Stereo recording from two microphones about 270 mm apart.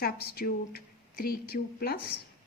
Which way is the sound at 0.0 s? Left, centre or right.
Left.